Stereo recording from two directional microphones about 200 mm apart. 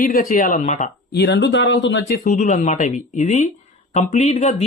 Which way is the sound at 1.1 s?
55° left (ahead or behind).